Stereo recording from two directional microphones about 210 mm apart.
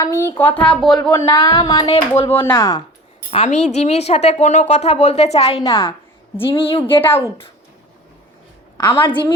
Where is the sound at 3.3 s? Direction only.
30° left (ahead or behind).